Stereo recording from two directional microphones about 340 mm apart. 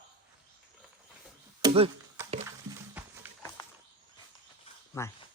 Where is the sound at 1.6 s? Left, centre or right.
Centre.